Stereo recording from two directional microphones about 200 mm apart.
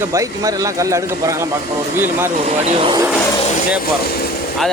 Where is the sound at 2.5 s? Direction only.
30° right (ahead or behind).